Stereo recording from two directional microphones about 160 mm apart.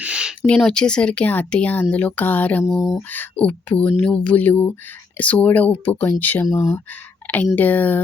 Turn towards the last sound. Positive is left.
turn(degrees=10)  # may be behind; listen again after turning